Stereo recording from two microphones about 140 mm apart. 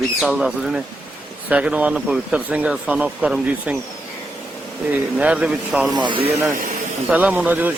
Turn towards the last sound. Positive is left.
turn(degrees=-10)  # may be behind; listen again after turning